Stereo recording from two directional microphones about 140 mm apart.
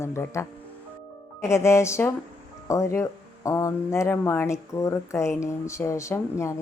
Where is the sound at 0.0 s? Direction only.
20° left (ahead or behind).